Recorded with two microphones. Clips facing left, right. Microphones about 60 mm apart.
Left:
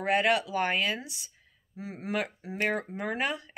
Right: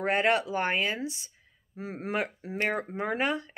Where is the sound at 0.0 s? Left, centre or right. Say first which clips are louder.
Even; right.